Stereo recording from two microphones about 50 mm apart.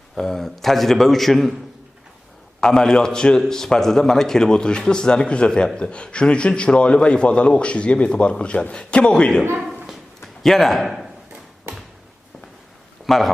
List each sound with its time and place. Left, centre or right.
0.2 s a man's voice: centre
2.6 s a man's voice: centre
9.6 s a sound: centre
10.4 s a man's voice: centre
13.1 s a man's voice: centre